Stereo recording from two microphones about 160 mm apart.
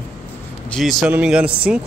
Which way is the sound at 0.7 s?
Centre (ahead or behind).